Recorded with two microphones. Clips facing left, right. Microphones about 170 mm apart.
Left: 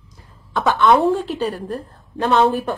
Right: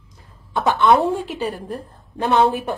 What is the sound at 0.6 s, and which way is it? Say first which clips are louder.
Speech: left 1 dB; 15° right (ahead or behind).